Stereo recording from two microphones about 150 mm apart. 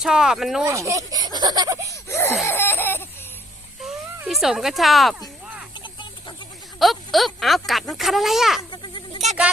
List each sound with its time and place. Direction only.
0.0 s speech: 5° right (ahead or behind)
0.6 s speech: 20° right (ahead or behind)
2.0 s wail: 15° left (ahead or behind)
2.5 s baby cry: 15° left (ahead or behind)
4.3 s speech: centre (ahead or behind)
5.8 s a sound: 30° left (ahead or behind)
6.7 s a sound: centre (ahead or behind)
8.7 s bleat: 30° left (ahead or behind)